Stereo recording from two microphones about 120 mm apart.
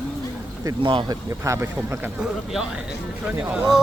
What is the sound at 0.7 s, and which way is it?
Speech, 35° right (ahead or behind).